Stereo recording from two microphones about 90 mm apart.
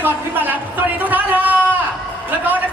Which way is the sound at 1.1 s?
20° right (ahead or behind).